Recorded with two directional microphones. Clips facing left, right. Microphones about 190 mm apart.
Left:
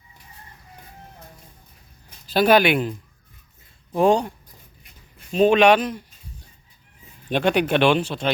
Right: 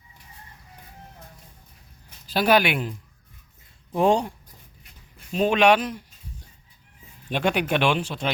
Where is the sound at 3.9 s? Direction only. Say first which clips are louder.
Left 2 dB; 25° right (ahead or behind).